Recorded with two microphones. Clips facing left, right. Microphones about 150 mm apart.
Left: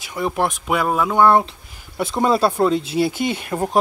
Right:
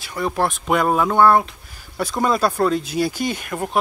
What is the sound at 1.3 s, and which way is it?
Speech, 25° left (ahead or behind).